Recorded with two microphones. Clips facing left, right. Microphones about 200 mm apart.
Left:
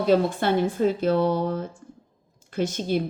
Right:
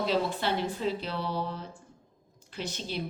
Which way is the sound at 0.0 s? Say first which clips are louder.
Left 8 dB; 50° left (ahead or behind).